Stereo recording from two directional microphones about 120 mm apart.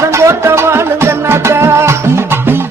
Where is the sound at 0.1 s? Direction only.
25° right (ahead or behind).